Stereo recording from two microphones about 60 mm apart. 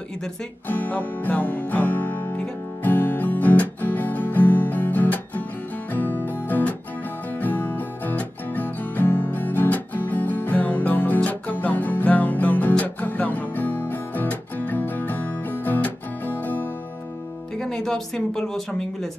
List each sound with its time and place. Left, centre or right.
0.7 s music: left
7.3 s music: left
17.6 s speech: centre